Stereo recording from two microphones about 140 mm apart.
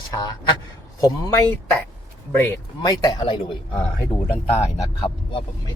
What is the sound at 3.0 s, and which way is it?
A man's voice, 30° left (ahead or behind).